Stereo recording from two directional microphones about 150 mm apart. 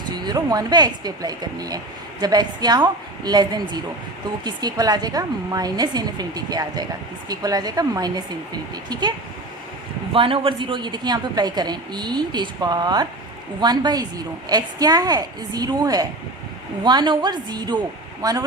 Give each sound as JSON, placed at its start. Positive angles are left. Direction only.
{"t": 0.3, "sound": "a woman's voice", "side_deg": -25}